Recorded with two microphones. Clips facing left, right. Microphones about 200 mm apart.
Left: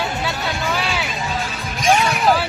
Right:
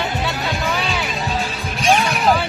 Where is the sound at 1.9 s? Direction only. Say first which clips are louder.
Even; centre (ahead or behind).